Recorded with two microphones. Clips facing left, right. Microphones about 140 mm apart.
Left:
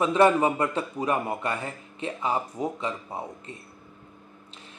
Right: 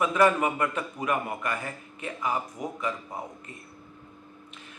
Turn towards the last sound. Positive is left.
turn(degrees=30)  # may be behind; listen again after turning